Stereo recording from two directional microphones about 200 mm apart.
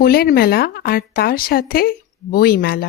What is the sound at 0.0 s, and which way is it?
Speech, 50° left (ahead or behind).